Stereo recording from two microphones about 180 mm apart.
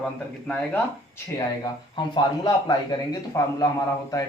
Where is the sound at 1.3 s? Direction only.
25° left (ahead or behind).